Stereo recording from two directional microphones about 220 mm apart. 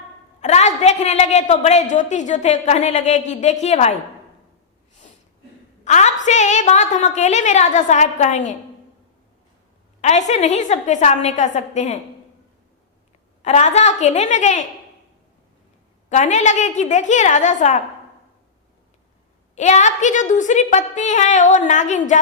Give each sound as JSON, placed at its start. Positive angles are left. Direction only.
{"t": 0.4, "sound": "a woman's voice", "side_deg": 30}
{"t": 5.8, "sound": "a woman's voice", "side_deg": 35}
{"t": 10.0, "sound": "a woman's voice", "side_deg": 30}
{"t": 13.4, "sound": "a woman's voice", "side_deg": 30}
{"t": 16.0, "sound": "a woman's voice", "side_deg": 30}
{"t": 19.5, "sound": "a woman's voice", "side_deg": 30}